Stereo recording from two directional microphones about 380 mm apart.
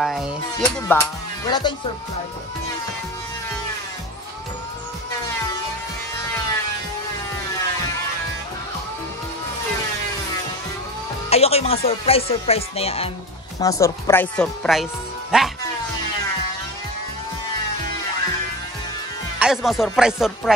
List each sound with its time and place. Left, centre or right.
0.0 s speech: centre
11.2 s speech: centre
19.4 s speech: centre